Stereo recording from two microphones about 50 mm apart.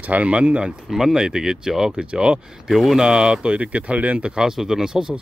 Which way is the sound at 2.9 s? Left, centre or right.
Centre.